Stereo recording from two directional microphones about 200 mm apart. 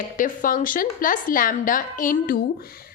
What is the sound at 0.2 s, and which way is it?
A woman's voice, 40° left (ahead or behind).